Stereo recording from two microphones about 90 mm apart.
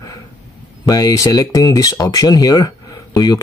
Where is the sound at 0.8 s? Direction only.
45° left (ahead or behind).